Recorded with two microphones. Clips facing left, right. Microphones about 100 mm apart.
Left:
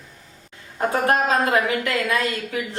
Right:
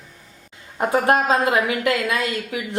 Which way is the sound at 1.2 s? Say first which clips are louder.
Right 1 dB; 20° right (ahead or behind).